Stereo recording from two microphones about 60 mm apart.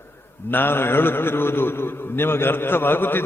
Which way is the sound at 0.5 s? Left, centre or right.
Left.